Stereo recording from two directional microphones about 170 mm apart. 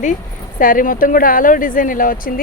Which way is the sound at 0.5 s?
55° left (ahead or behind).